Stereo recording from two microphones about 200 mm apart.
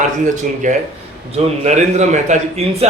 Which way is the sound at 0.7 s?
40° right (ahead or behind).